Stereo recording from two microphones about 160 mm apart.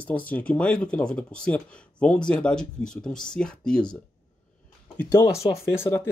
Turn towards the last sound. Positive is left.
turn(degrees=15)  # may be behind; listen again after turning